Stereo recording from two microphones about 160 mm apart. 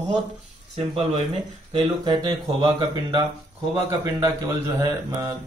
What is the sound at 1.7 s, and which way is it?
A man's voice, 30° right (ahead or behind).